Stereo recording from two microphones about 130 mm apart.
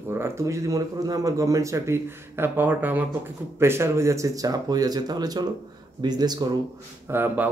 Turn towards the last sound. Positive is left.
turn(degrees=-15)  # may be behind; listen again after turning